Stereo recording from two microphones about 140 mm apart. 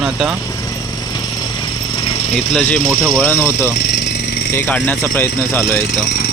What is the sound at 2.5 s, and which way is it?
Speech, 10° left (ahead or behind).